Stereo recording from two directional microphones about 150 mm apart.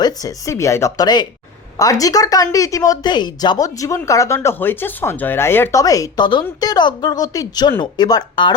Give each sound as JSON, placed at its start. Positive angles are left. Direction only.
{"t": 0.0, "sound": "speech", "side_deg": 25}